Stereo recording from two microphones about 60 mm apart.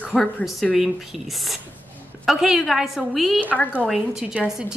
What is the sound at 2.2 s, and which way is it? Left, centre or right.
A woman's voice, centre.